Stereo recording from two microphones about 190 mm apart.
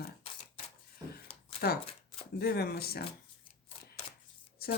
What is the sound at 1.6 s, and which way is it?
Speech, 50° left (ahead or behind).